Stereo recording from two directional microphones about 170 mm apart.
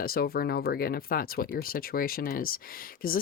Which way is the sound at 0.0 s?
60° left (ahead or behind).